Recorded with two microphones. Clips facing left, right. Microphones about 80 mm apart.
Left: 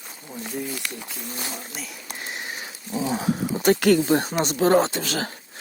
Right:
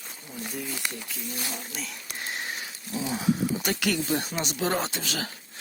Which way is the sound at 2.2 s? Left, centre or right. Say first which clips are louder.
Even; centre.